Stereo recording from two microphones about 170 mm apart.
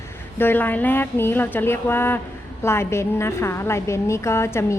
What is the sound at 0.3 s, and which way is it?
A woman's voice, 10° left (ahead or behind).